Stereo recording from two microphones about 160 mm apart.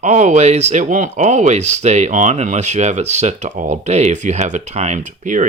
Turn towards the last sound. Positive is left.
turn(degrees=-50)  # may be behind; listen again after turning